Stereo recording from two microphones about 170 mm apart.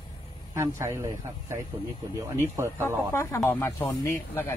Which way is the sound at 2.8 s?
15° left (ahead or behind).